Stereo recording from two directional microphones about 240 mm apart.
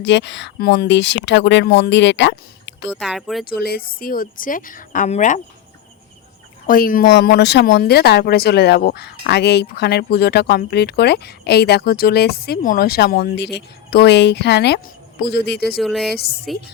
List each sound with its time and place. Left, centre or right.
0.0 s speech: left
2.9 s speech: centre
3.4 s a woman's voice: left
6.7 s speech: left
15.8 s speech: centre